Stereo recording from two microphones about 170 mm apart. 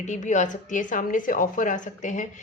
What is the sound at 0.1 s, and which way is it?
Speech, 45° left (ahead or behind).